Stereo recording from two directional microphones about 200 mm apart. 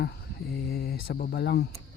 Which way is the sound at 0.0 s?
55° left (ahead or behind).